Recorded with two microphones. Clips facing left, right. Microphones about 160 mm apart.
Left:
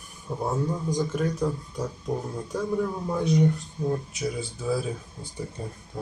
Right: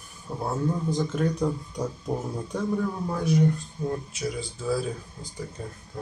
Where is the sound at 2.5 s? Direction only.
10° left (ahead or behind).